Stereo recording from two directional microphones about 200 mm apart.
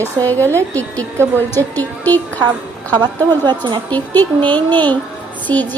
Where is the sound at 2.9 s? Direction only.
20° right (ahead or behind).